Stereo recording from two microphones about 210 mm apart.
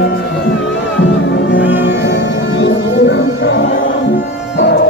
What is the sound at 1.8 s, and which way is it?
Music, 55° left (ahead or behind).